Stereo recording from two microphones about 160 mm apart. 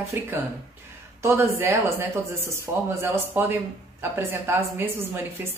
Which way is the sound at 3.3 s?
10° right (ahead or behind).